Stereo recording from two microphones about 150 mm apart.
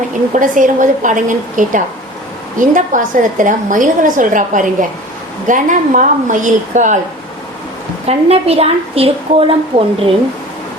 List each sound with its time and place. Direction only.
0.3 s a woman's voice: 60° right (ahead or behind)
8.0 s a woman's voice: 40° right (ahead or behind)